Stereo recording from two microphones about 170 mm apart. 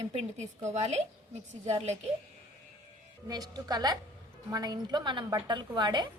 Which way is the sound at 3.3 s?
25° right (ahead or behind).